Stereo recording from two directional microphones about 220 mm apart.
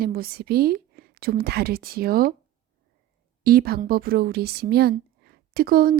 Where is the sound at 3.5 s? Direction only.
45° right (ahead or behind).